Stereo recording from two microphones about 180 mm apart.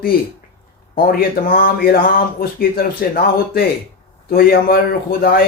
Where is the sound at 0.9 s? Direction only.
55° left (ahead or behind).